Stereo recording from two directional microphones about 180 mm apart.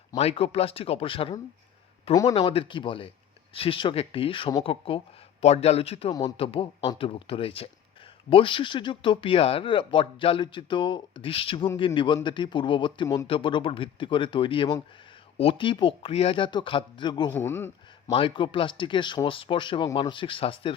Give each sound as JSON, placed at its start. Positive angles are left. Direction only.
{"t": 0.2, "sound": "speech", "side_deg": 35}
{"t": 17.3, "sound": "speech", "side_deg": 15}
{"t": 18.1, "sound": "speech", "side_deg": 30}